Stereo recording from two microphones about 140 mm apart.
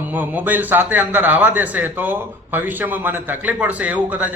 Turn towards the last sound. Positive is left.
turn(degrees=-10)  # may be behind; listen again after turning